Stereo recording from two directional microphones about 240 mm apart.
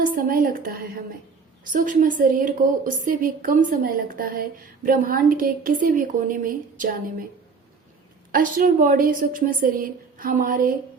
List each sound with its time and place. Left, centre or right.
0.0 s a woman's voice: right
8.3 s a woman's voice: right